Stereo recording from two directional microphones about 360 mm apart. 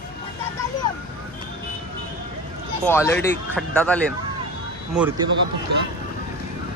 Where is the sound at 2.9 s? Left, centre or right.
Centre.